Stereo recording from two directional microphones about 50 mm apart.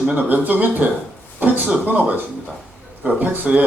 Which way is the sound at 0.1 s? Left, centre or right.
Right.